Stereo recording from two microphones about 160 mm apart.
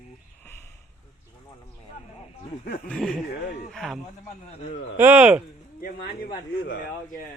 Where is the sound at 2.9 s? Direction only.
5° left (ahead or behind).